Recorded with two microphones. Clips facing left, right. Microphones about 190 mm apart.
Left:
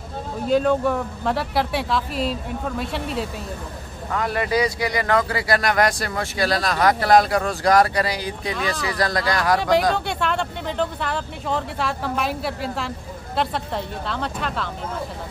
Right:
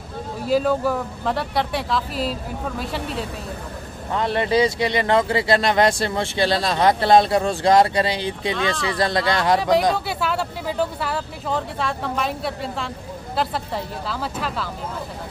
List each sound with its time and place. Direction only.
0.5 s speech: 5° right (ahead or behind)
4.1 s speech: 25° right (ahead or behind)
9.6 s speech: centre (ahead or behind)